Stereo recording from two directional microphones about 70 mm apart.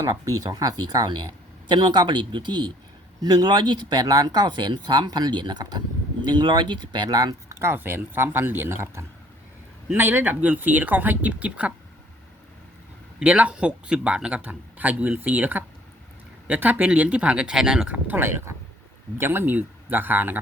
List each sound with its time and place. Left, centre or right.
0.0 s speech: right
1.6 s speech: right
3.2 s speech: right
7.6 s a man's voice: right
13.2 s a man's voice: centre
18.2 s a man's voice: right